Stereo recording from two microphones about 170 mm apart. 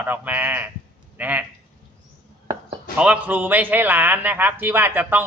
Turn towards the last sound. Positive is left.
turn(degrees=-10)  # may be behind; listen again after turning